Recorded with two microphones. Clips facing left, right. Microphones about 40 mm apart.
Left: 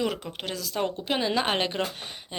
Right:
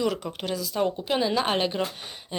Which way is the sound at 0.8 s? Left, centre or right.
Left.